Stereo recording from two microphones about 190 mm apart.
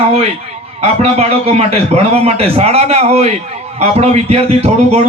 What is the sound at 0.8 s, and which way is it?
Speech, 35° right (ahead or behind).